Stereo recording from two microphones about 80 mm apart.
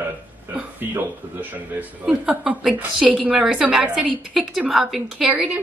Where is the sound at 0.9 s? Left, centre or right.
Right.